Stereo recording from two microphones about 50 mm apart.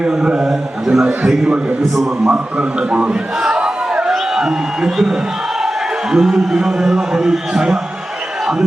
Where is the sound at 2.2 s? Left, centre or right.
Right.